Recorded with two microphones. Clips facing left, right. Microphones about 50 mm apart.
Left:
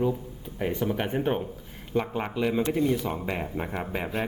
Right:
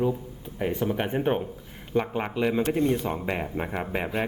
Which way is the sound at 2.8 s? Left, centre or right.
Right.